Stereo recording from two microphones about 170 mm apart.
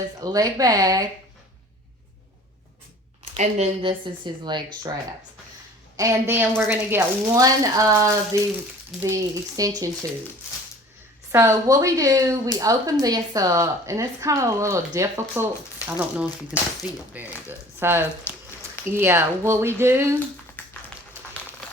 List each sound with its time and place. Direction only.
0.2 s speech: 20° right (ahead or behind)
3.3 s speech: 40° right (ahead or behind); by 4.9 s 25° right (ahead or behind)
6.0 s speech: 15° right (ahead or behind)
11.3 s speech: 15° right (ahead or behind)
20.6 s music: 10° left (ahead or behind)